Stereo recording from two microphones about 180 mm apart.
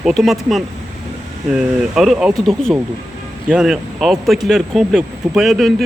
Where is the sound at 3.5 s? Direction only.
5° right (ahead or behind).